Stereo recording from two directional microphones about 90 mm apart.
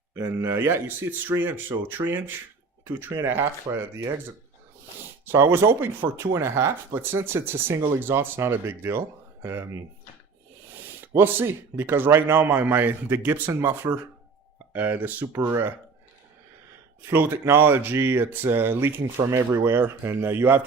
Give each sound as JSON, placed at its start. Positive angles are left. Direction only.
{"t": 0.2, "sound": "speech", "side_deg": -30}
{"t": 5.2, "sound": "speech", "side_deg": -25}
{"t": 11.0, "sound": "speech", "side_deg": -25}
{"t": 17.1, "sound": "speech", "side_deg": -25}